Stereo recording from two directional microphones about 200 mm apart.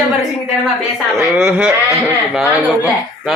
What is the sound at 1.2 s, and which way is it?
Speech, 5° right (ahead or behind).